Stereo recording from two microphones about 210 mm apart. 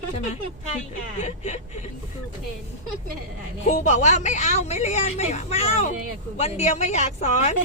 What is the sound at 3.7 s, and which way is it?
Speech, 35° left (ahead or behind).